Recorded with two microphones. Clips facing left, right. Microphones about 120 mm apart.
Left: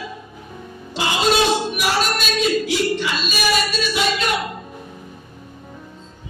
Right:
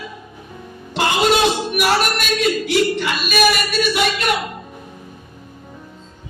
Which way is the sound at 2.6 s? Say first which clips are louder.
Right 3 dB; 60° right (ahead or behind).